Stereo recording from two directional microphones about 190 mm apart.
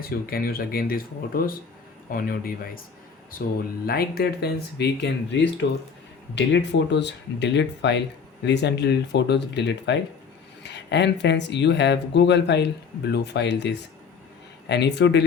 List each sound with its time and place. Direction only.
0.0 s speech: 50° left (ahead or behind)